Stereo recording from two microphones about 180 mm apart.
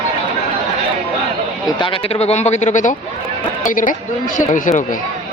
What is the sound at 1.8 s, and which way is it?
A man's voice, 30° left (ahead or behind).